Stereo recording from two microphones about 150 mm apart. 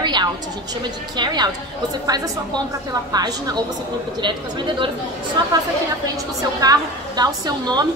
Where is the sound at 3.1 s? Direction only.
25° right (ahead or behind).